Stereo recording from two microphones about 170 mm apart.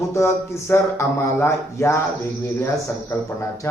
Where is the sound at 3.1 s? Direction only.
15° left (ahead or behind).